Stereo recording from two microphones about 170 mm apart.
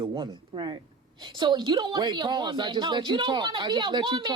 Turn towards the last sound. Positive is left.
turn(degrees=-25)  # may be behind; listen again after turning